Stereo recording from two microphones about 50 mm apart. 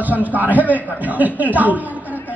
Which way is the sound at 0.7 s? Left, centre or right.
Left.